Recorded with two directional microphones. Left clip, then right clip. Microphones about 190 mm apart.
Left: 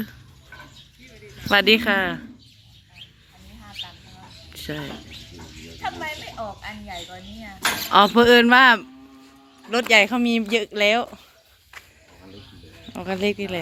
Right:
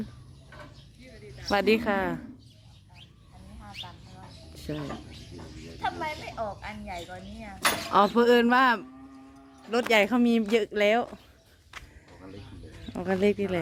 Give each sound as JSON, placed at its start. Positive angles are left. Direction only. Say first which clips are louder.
{"t": 1.5, "sound": "speech", "louder": "left 7 dB", "side_deg": -5}
{"t": 5.8, "sound": "speech", "louder": "left 2 dB", "side_deg": 15}
{"t": 7.9, "sound": "speech", "louder": "left 8 dB", "side_deg": 5}
{"t": 9.6, "sound": "speech", "louder": "left 6 dB", "side_deg": -10}
{"t": 12.8, "sound": "speech", "louder": "left 1 dB", "side_deg": -15}